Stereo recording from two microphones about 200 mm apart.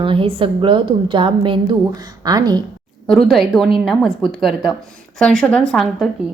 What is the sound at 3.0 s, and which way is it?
A woman's voice, 5° left (ahead or behind).